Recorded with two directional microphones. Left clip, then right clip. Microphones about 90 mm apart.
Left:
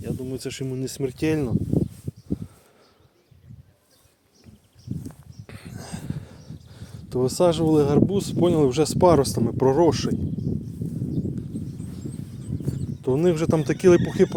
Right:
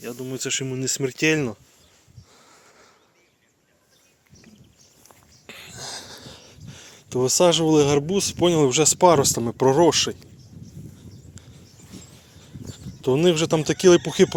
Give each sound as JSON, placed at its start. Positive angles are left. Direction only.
{"t": 0.3, "sound": "speech", "side_deg": 20}
{"t": 0.6, "sound": "speech", "side_deg": 5}
{"t": 5.0, "sound": "a sound", "side_deg": 30}
{"t": 6.0, "sound": "a sound", "side_deg": -5}
{"t": 6.7, "sound": "a sound", "side_deg": 15}
{"t": 6.9, "sound": "speech", "side_deg": 25}
{"t": 9.4, "sound": "speech", "side_deg": 15}
{"t": 13.0, "sound": "speech", "side_deg": -5}
{"t": 13.3, "sound": "speech", "side_deg": 15}